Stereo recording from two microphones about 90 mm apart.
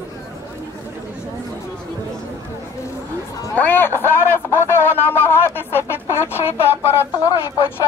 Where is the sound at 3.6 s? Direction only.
20° left (ahead or behind).